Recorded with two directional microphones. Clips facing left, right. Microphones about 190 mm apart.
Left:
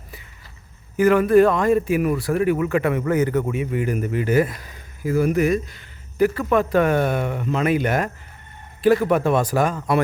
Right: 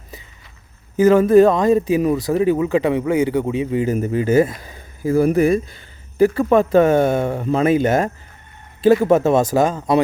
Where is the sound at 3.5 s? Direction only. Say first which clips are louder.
Right 4 dB; 25° right (ahead or behind).